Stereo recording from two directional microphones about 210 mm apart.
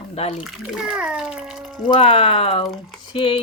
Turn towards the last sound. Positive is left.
turn(degrees=25)  # may be behind; listen again after turning